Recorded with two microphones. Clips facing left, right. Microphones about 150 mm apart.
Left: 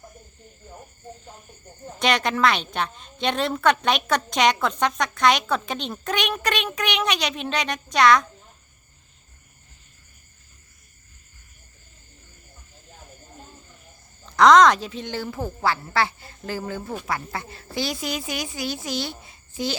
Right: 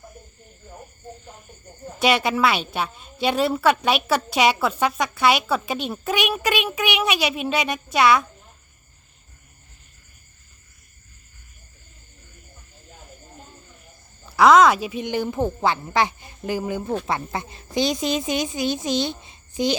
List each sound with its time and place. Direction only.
2.0 s a woman's voice: 5° right (ahead or behind)
14.3 s a woman's voice: 5° right (ahead or behind)